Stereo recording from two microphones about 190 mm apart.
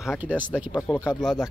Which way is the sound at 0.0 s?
5° right (ahead or behind).